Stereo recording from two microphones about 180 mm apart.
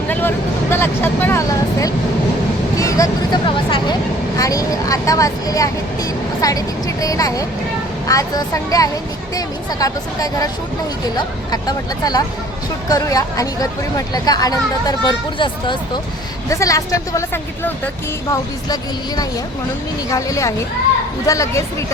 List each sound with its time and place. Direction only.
0.1 s speech: 10° left (ahead or behind)